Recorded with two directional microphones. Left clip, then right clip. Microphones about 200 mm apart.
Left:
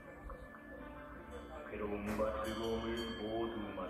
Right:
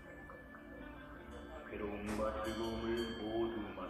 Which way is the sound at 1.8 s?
55° left (ahead or behind).